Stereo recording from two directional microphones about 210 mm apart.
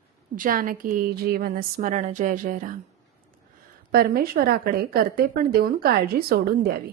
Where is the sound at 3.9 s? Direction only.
45° right (ahead or behind).